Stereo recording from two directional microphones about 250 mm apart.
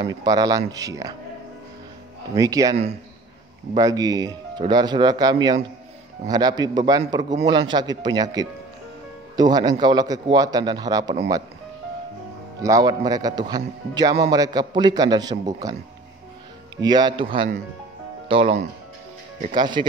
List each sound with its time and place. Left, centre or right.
0.0 s a man's voice: centre
2.3 s a man's voice: centre
12.6 s a man's voice: centre
16.7 s a man's voice: centre
19.4 s a man's voice: centre